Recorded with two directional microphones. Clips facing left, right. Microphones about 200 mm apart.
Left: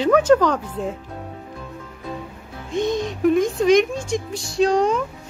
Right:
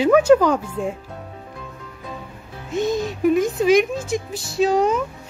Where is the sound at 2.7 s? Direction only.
5° right (ahead or behind).